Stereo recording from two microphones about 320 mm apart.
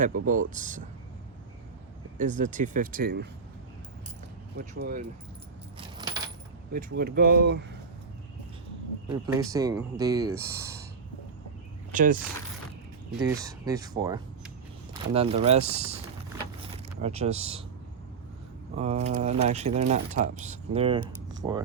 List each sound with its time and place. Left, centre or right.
0.0 s speech: right
2.1 s speech: right
4.5 s speech: right
6.0 s coin: centre
6.7 s speech: right
9.0 s speech: centre
11.9 s speech: right
13.1 s speech: centre
17.0 s speech: centre
18.8 s speech: centre